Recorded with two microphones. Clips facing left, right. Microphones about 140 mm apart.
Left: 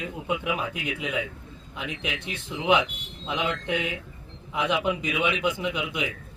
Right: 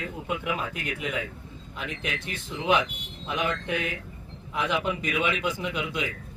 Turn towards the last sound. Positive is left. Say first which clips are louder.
# left 1 dB
turn(degrees=15)  # may be behind; listen again after turning